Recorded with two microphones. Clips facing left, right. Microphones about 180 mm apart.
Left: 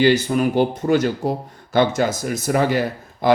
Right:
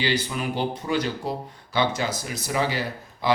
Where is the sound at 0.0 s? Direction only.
50° left (ahead or behind).